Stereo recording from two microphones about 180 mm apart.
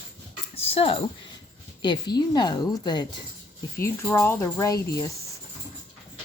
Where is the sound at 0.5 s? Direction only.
30° left (ahead or behind).